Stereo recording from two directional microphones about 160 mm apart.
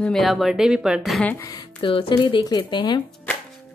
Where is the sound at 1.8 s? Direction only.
35° left (ahead or behind).